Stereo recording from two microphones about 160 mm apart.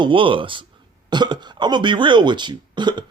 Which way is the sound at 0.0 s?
30° right (ahead or behind).